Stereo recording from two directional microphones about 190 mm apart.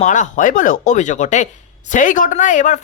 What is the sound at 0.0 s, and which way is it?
Speech, 40° left (ahead or behind).